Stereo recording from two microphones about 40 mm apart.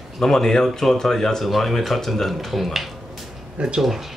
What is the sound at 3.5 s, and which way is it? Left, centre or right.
Speech, right.